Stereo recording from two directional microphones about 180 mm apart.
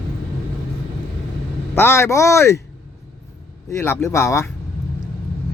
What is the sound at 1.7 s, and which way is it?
Speech, 15° left (ahead or behind).